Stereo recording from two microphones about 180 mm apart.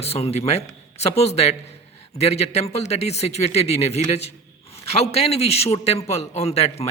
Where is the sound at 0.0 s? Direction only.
35° left (ahead or behind).